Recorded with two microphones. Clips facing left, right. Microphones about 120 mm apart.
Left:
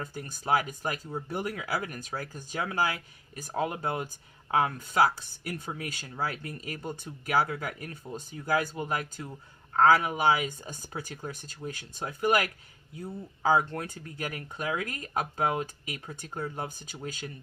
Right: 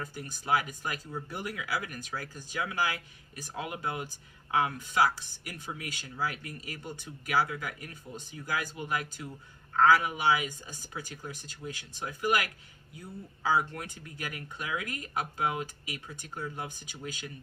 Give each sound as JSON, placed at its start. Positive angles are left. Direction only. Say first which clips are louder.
{"t": 0.0, "sound": "speech", "louder": "left 3 dB", "side_deg": 40}